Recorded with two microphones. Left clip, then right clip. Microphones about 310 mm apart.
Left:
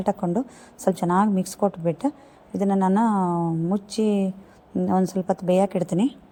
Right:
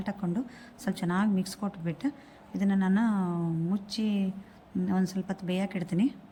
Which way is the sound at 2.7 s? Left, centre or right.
Left.